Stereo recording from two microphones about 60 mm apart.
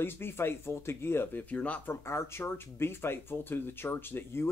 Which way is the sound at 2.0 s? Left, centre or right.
Left.